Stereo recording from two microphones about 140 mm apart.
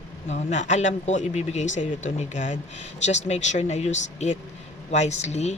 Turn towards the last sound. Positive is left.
turn(degrees=50)  # may be behind; listen again after turning